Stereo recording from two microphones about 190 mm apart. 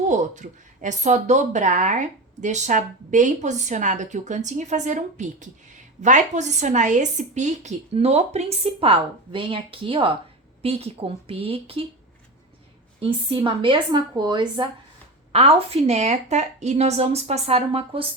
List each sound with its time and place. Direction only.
0.1 s speech: 40° right (ahead or behind)
13.0 s speech: 30° right (ahead or behind)